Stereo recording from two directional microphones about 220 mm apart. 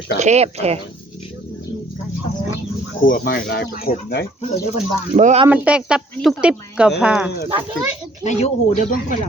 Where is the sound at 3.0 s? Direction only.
40° left (ahead or behind).